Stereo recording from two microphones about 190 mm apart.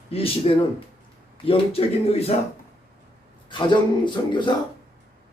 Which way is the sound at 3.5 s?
25° left (ahead or behind).